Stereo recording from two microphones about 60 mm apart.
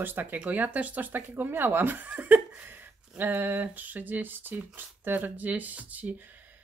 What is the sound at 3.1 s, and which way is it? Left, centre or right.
Speech, right.